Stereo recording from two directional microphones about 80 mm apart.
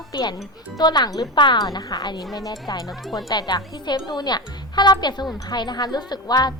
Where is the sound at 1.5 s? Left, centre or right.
Left.